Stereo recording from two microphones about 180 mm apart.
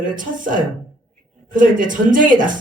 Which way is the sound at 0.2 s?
45° right (ahead or behind).